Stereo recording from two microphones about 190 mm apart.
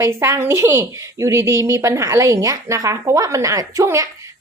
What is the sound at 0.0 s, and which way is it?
A woman's voice, 15° right (ahead or behind).